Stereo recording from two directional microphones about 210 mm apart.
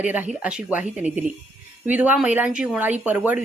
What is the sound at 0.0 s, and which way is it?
Speech, 5° right (ahead or behind).